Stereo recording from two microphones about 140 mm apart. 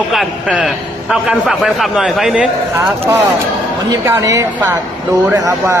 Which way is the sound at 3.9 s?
20° right (ahead or behind).